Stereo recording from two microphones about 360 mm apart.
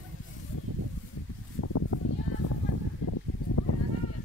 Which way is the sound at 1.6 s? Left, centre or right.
Left.